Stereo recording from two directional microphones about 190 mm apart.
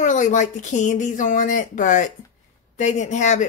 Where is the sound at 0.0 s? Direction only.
40° left (ahead or behind).